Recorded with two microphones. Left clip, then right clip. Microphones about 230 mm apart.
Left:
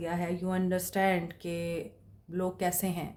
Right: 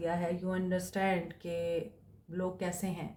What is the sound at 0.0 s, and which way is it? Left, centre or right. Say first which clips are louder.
Speech: even; left.